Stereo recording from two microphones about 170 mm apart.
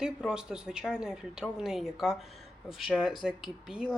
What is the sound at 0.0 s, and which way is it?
Speech, 5° right (ahead or behind).